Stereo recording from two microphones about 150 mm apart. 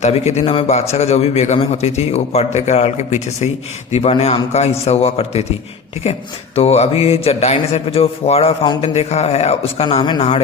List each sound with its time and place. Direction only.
0.0 s a man's voice: 50° left (ahead or behind)
6.6 s a man's voice: 45° left (ahead or behind)